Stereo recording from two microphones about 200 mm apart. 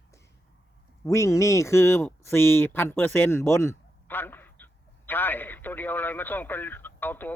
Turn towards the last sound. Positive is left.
turn(degrees=10)  # may be behind; listen again after turning